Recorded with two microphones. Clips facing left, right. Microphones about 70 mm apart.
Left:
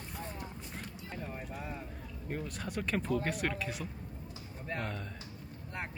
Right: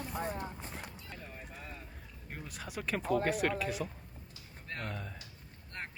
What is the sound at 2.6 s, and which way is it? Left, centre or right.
Speech, centre.